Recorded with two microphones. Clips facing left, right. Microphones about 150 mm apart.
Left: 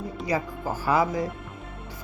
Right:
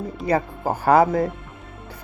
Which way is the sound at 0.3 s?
60° right (ahead or behind).